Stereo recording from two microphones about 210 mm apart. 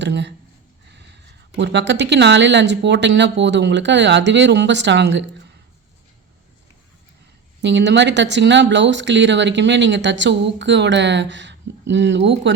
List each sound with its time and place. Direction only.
0.0 s speech: 55° right (ahead or behind)
7.6 s speech: 55° right (ahead or behind)